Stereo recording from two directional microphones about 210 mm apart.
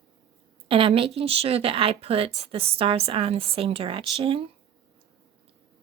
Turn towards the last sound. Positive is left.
turn(degrees=-25)  # may be behind; listen again after turning